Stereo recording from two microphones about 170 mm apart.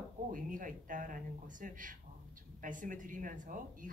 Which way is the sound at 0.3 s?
50° right (ahead or behind).